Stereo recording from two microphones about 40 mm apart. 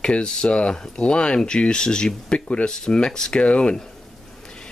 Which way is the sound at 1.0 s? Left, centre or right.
Left.